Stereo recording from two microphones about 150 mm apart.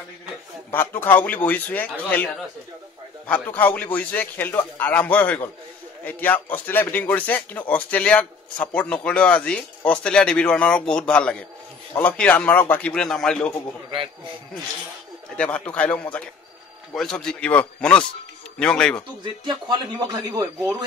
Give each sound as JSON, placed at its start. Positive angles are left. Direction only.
{"t": 0.7, "sound": "speech", "side_deg": 15}
{"t": 15.3, "sound": "speech", "side_deg": 5}
{"t": 19.4, "sound": "speech", "side_deg": -30}